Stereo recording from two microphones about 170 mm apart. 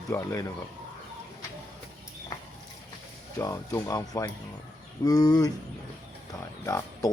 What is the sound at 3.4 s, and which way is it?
Speech, 15° left (ahead or behind).